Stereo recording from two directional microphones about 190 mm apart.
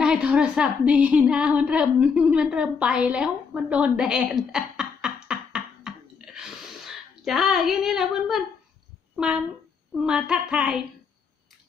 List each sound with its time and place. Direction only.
0.0 s a woman's voice: 5° right (ahead or behind)
6.3 s a sound: centre (ahead or behind)
9.1 s speech: 5° right (ahead or behind)